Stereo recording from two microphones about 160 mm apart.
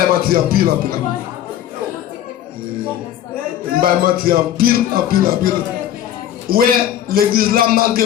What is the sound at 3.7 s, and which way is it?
A man's voice, 65° right (ahead or behind).